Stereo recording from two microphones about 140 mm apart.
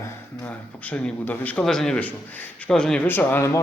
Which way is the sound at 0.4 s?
10° left (ahead or behind).